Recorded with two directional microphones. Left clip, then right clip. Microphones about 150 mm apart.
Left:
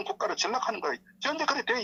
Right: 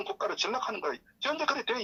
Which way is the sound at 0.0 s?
25° left (ahead or behind).